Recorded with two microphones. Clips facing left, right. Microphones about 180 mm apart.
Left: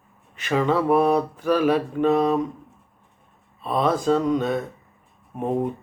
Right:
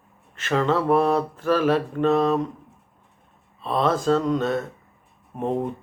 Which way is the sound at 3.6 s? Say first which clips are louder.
Even; 5° left (ahead or behind).